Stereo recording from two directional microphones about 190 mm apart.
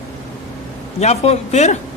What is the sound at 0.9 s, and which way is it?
Speech, 35° left (ahead or behind).